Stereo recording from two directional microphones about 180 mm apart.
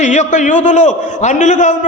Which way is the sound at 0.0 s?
40° left (ahead or behind).